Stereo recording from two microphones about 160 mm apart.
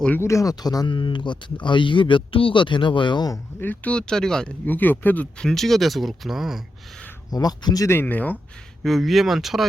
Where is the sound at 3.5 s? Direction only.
10° left (ahead or behind).